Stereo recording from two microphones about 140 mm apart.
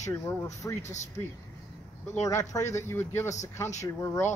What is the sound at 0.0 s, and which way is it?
Speech, 20° left (ahead or behind).